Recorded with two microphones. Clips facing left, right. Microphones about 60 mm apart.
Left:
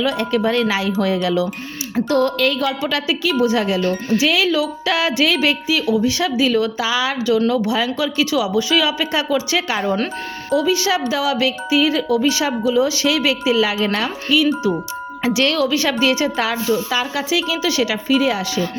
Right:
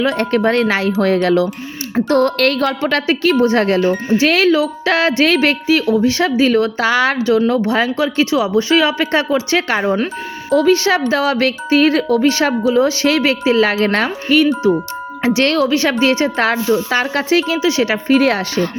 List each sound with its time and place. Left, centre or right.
0.0 s a woman's voice: right
3.8 s speech: centre
4.2 s a woman's voice: right
7.2 s a woman's voice: right
9.8 s speech: centre
10.5 s a woman's voice: right
17.6 s a woman's voice: right
18.1 s a woman's voice: right